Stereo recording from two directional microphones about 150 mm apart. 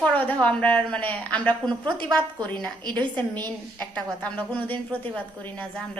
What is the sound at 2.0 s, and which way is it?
Speech, 25° right (ahead or behind).